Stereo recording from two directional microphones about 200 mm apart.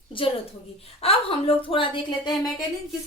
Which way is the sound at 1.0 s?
30° left (ahead or behind).